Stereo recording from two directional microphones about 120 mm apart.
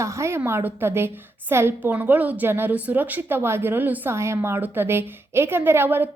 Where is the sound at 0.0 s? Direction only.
25° right (ahead or behind).